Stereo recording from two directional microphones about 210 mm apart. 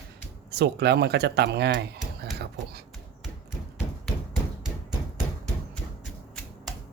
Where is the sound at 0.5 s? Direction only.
50° right (ahead or behind).